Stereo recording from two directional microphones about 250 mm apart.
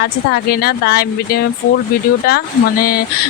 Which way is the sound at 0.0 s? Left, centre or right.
Left.